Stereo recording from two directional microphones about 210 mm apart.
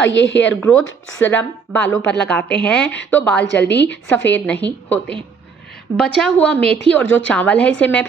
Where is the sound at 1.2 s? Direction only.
10° left (ahead or behind).